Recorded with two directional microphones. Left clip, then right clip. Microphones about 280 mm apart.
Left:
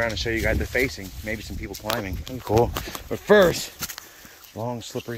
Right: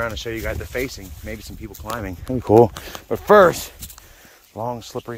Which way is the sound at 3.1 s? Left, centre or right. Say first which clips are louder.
Right 5 dB; centre.